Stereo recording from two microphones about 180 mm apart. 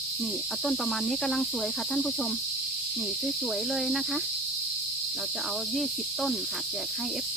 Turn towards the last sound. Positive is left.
turn(degrees=0)  # may be behind; listen again after turning